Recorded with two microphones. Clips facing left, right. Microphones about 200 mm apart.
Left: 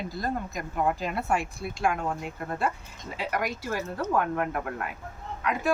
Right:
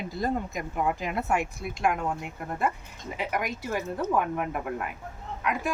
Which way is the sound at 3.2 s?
20° right (ahead or behind).